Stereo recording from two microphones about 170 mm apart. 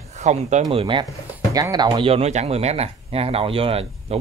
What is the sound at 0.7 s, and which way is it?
Speech, 30° right (ahead or behind).